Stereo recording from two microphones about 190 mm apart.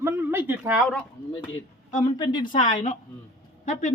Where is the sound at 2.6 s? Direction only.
40° left (ahead or behind).